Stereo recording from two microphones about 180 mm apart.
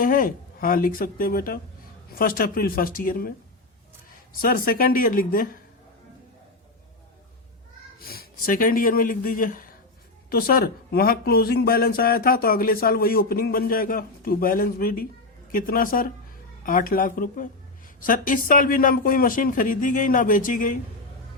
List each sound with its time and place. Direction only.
0.0 s a woman's voice: 50° left (ahead or behind)
8.0 s a woman's voice: 55° left (ahead or behind)